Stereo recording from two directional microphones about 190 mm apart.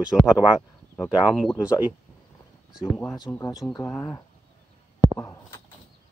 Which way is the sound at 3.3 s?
15° left (ahead or behind).